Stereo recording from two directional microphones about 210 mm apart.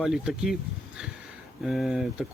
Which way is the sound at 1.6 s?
Centre (ahead or behind).